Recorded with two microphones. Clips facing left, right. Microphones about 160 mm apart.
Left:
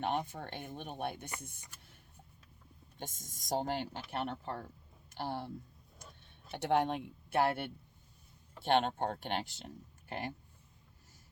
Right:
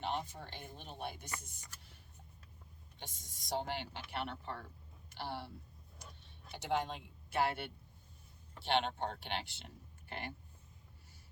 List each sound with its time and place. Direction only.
0.0 s speech: 55° left (ahead or behind)
3.0 s speech: 45° left (ahead or behind)
6.5 s speech: 60° left (ahead or behind); by 10.3 s 40° left (ahead or behind)